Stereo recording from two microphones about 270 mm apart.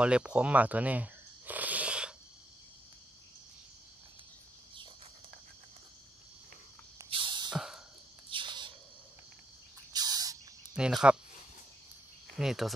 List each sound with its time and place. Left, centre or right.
0.0 s snake: centre
7.0 s a sound: centre
7.5 s a sound: centre
8.3 s cricket: centre
9.9 s bird: centre
10.8 s speech: centre
12.4 s speech: centre